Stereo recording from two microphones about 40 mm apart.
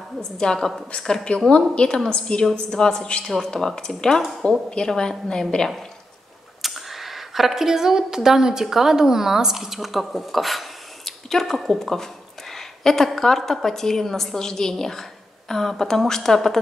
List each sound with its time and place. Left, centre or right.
0.2 s a woman's voice: centre
6.6 s a woman's voice: centre